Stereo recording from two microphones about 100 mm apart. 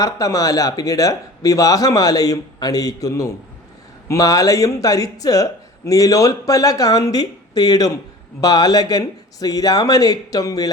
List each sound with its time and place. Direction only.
0.0 s speech: 35° left (ahead or behind)